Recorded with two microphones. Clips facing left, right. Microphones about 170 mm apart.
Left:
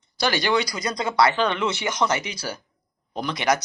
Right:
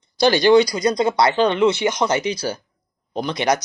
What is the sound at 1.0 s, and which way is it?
Speech, 20° right (ahead or behind).